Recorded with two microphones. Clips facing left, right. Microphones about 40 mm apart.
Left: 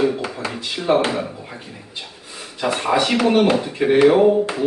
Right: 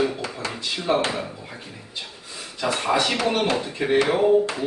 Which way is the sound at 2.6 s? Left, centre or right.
Left.